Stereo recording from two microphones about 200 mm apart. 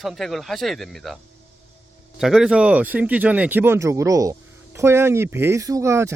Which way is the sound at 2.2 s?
5° right (ahead or behind).